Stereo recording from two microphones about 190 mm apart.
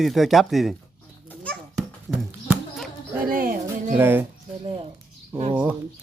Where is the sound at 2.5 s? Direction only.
5° right (ahead or behind).